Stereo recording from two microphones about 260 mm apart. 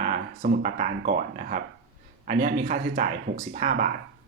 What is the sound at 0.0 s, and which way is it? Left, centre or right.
Speech, right.